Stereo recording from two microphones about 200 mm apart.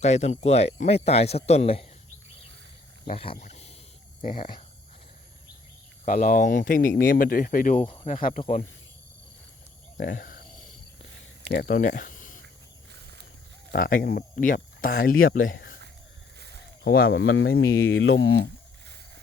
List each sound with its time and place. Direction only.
0.0 s speech: 35° left (ahead or behind)
3.2 s speech: 30° left (ahead or behind)
6.1 s speech: 40° left (ahead or behind)
10.0 s speech: 40° left (ahead or behind)
11.5 s speech: 45° left (ahead or behind)
13.7 s speech: 45° left (ahead or behind)
16.8 s speech: 50° left (ahead or behind)
17.2 s speech: 65° left (ahead or behind)